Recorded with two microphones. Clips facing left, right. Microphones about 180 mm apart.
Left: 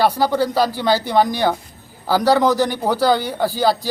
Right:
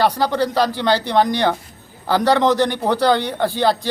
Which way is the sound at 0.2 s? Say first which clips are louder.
Left 1 dB; 10° left (ahead or behind).